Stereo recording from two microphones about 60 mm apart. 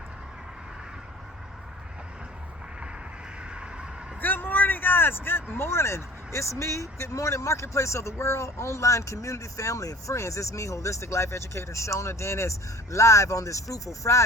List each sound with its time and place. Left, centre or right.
3.5 s music: centre
4.2 s speech: left